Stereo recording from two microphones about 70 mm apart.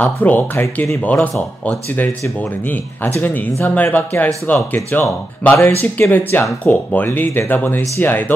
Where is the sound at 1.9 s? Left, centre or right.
Left.